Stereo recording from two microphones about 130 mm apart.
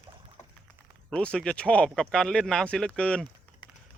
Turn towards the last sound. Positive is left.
turn(degrees=5)  # may be behind; listen again after turning